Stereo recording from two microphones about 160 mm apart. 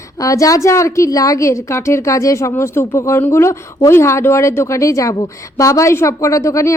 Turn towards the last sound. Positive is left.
turn(degrees=20)  # may be behind; listen again after turning